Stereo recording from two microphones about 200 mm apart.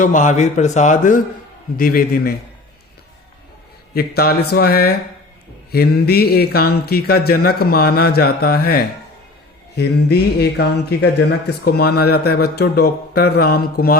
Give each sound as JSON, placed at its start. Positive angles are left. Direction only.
{"t": 0.0, "sound": "a man's voice", "side_deg": 40}
{"t": 3.9, "sound": "speech", "side_deg": 50}